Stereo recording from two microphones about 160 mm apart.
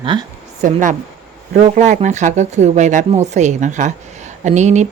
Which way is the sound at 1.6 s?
50° right (ahead or behind).